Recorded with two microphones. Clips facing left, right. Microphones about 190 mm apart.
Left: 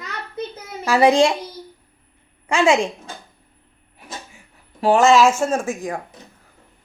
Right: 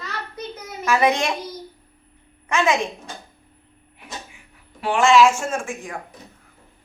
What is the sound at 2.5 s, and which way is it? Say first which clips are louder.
Speech: left 4 dB; 30° left (ahead or behind).